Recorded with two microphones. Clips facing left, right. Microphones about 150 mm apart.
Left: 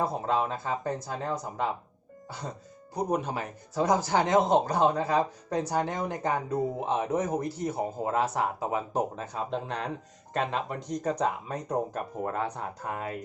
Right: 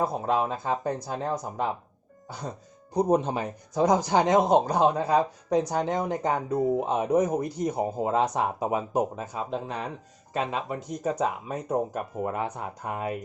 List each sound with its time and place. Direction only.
0.0 s speech: 15° right (ahead or behind)
2.9 s speech: 20° right (ahead or behind)